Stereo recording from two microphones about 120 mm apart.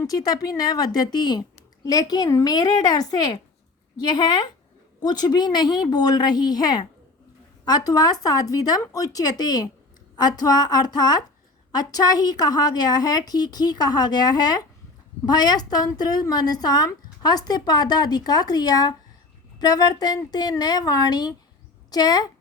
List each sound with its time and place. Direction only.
0.0 s a woman's voice: 30° left (ahead or behind)